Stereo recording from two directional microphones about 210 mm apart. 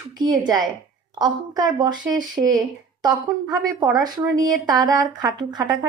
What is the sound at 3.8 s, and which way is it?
A woman's voice, 20° right (ahead or behind).